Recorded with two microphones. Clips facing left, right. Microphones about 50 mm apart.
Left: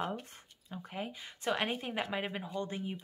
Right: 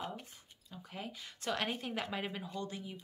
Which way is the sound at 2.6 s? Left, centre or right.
Left.